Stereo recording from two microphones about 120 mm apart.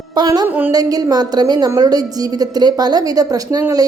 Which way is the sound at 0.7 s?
30° right (ahead or behind).